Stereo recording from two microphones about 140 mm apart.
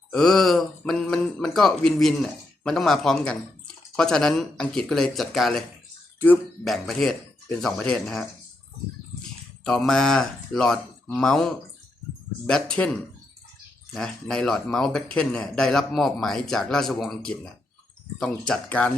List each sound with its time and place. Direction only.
0.1 s speech: 5° left (ahead or behind)
6.1 s speech: 15° left (ahead or behind)
6.7 s speech: centre (ahead or behind)
9.6 s speech: 5° left (ahead or behind)